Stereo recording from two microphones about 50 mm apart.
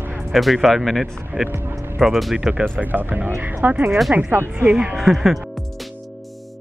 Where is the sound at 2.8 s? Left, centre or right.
Right.